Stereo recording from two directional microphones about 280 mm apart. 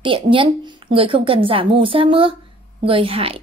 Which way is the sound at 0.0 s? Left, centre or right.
Centre.